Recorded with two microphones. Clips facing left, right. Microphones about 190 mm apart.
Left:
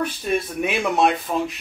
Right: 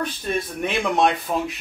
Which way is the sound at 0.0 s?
10° left (ahead or behind).